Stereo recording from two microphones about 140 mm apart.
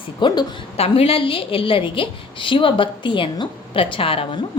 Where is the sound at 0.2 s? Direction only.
30° left (ahead or behind).